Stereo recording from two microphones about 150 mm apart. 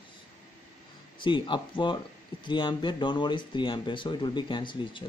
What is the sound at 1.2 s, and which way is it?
Speech, 35° left (ahead or behind).